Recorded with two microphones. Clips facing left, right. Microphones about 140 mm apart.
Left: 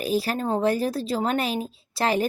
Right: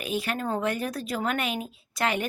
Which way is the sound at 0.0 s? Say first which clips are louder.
Left 5 dB; 35° left (ahead or behind).